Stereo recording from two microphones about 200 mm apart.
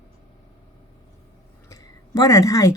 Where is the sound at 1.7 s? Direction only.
15° left (ahead or behind).